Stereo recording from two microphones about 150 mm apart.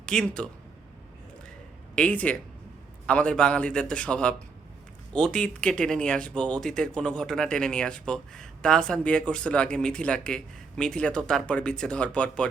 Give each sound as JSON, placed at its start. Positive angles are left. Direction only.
{"t": 0.0, "sound": "speech", "side_deg": 5}
{"t": 2.0, "sound": "a man's voice", "side_deg": 10}